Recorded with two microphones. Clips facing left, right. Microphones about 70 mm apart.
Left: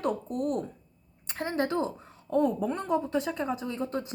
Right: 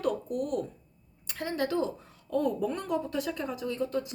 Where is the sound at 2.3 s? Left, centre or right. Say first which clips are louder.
Left 2 dB; left.